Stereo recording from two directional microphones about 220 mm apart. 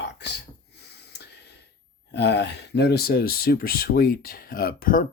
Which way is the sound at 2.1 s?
50° left (ahead or behind).